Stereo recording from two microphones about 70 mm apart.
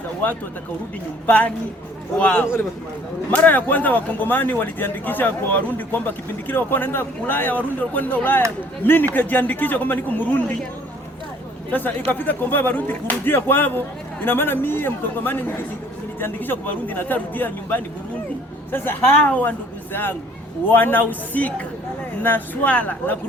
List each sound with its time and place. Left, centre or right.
1.3 s a man's voice: left
11.7 s a man's voice: left